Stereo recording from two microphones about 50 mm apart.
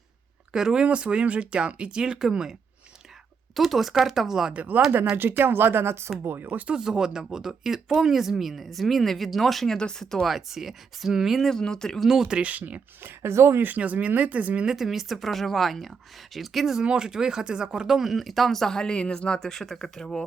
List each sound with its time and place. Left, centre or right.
0.5 s speech: centre
3.5 s speech: centre
4.5 s speech: right
6.3 s speech: right
6.7 s speech: centre
10.2 s speech: centre
11.4 s speech: centre
11.9 s speech: centre
12.3 s speech: right
13.0 s speech: right
13.3 s speech: right
13.6 s speech: right
14.7 s speech: centre
16.8 s speech: centre